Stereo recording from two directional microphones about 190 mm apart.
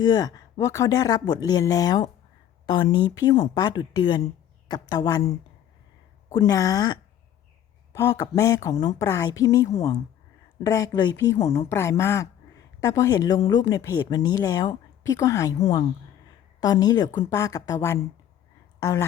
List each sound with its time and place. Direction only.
0.0 s speech: 20° left (ahead or behind)
6.2 s a woman's voice: 20° left (ahead or behind)
10.7 s a woman's voice: 20° left (ahead or behind)
16.6 s a woman's voice: 20° left (ahead or behind)